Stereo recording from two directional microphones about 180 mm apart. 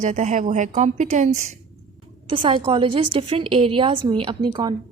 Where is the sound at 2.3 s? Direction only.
30° right (ahead or behind).